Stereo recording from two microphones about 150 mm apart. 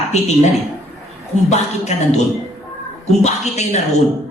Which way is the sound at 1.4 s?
50° left (ahead or behind).